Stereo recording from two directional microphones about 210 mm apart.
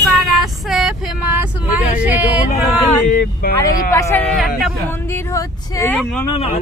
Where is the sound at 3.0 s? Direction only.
45° left (ahead or behind).